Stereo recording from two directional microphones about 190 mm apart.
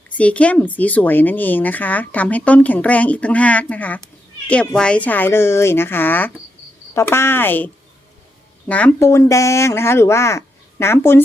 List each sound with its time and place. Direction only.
0.2 s speech: 5° left (ahead or behind)